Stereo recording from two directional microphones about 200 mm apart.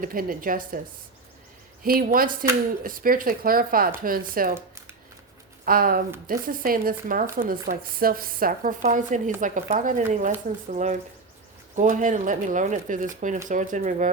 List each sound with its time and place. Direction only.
0.0 s speech: 45° right (ahead or behind)
1.8 s speech: 45° right (ahead or behind)
5.6 s speech: 45° right (ahead or behind)